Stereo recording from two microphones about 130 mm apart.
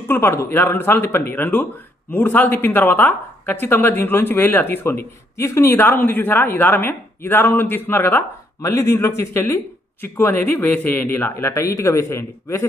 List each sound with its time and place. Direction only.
0.1 s a man's voice: 20° left (ahead or behind)